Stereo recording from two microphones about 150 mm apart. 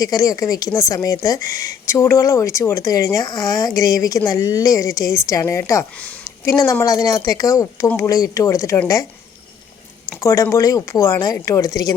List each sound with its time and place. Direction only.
0.0 s a woman's voice: 25° left (ahead or behind)
10.2 s a woman's voice: 20° left (ahead or behind)